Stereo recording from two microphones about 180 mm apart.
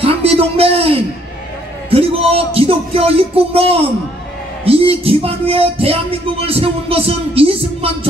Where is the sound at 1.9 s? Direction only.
35° right (ahead or behind).